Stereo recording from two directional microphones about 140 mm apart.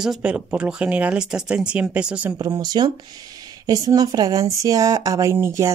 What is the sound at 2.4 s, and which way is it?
Speech, 25° right (ahead or behind).